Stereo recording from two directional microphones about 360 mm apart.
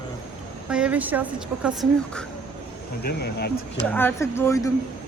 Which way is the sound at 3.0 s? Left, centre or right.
Left.